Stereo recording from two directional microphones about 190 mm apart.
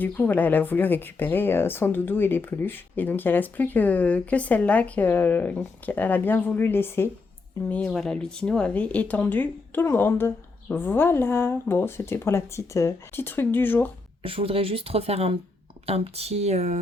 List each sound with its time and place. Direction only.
0.0 s speech: 10° left (ahead or behind)
14.2 s speech: 30° right (ahead or behind)